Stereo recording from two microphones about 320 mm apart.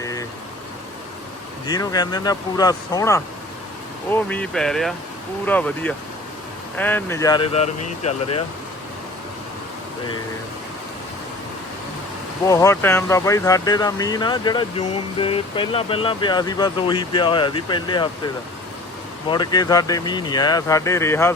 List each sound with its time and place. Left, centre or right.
0.0 s vehicle: centre
1.6 s speech: centre
12.5 s speech: centre
19.3 s speech: centre